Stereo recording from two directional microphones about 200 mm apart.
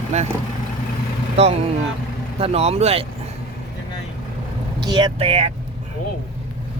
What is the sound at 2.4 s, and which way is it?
Speech, 30° right (ahead or behind).